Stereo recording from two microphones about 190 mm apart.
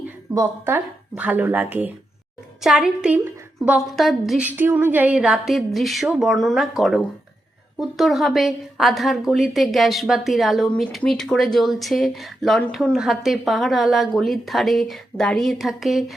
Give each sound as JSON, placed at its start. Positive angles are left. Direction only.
{"t": 0.3, "sound": "a woman's voice", "side_deg": -10}